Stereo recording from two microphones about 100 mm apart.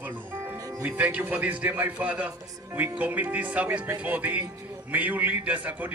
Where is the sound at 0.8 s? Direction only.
15° right (ahead or behind).